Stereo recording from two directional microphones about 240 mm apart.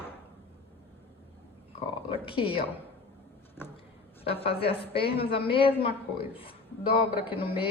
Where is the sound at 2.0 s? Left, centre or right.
Left.